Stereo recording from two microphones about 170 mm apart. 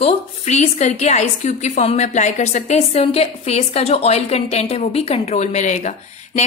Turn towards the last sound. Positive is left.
turn(degrees=45)  # may be behind; listen again after turning